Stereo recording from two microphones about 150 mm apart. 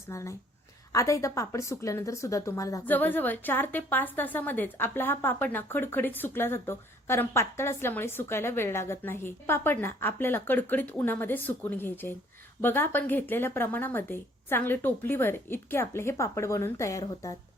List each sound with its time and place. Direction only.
0.1 s a woman's voice: 20° left (ahead or behind)